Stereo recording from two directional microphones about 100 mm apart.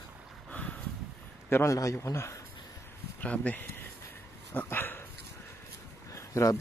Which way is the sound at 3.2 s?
15° left (ahead or behind).